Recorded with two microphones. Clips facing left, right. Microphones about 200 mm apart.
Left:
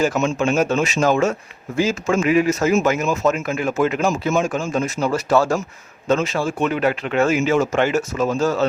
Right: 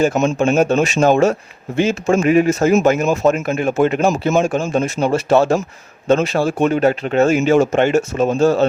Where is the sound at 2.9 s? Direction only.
50° right (ahead or behind).